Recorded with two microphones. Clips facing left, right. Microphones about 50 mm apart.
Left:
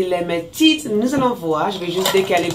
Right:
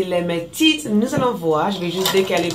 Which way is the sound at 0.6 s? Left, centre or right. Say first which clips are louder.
Left 2 dB; centre.